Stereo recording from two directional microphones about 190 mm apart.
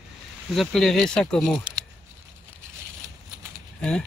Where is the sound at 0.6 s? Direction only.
Centre (ahead or behind).